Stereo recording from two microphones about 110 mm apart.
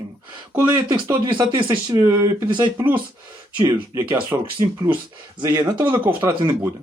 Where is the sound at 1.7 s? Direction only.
25° right (ahead or behind).